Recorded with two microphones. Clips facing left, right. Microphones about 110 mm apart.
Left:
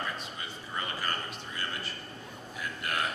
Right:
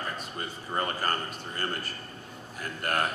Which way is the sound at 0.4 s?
45° right (ahead or behind).